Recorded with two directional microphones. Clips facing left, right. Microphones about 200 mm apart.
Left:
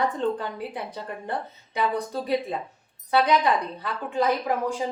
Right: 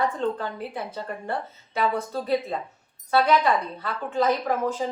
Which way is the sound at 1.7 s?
15° left (ahead or behind).